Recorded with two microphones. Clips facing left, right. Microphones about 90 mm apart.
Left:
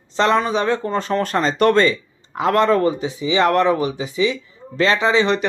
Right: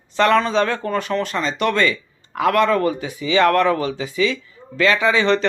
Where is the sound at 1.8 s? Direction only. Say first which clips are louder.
Left 1 dB; 25° left (ahead or behind).